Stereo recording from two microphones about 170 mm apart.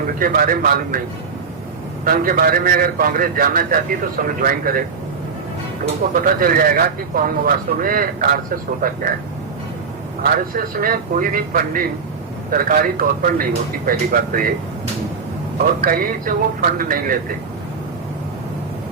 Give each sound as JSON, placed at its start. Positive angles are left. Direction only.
{"t": 0.2, "sound": "speech", "side_deg": -55}
{"t": 2.0, "sound": "speech", "side_deg": -55}
{"t": 6.2, "sound": "speech", "side_deg": -55}
{"t": 10.2, "sound": "speech", "side_deg": -55}
{"t": 15.5, "sound": "speech", "side_deg": -55}